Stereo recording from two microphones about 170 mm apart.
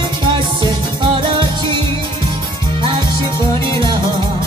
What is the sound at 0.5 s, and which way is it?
Music, 25° right (ahead or behind).